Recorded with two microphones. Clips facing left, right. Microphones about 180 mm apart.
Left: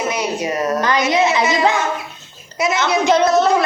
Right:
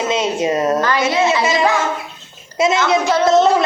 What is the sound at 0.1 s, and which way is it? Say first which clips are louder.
Speech: right 4 dB; 25° right (ahead or behind).